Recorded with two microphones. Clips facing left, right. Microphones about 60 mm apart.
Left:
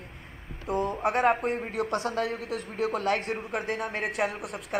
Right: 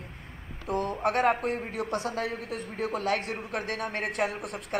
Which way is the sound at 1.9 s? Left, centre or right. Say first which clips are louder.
Left 1 dB; left.